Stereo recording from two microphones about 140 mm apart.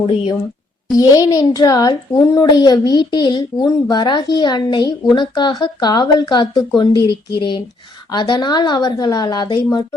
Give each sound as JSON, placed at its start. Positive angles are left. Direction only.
{"t": 0.9, "sound": "a woman's voice", "side_deg": 25}